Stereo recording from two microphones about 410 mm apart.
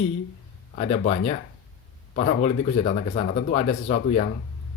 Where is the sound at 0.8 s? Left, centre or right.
Centre.